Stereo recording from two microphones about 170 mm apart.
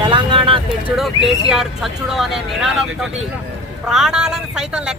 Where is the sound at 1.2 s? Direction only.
Centre (ahead or behind).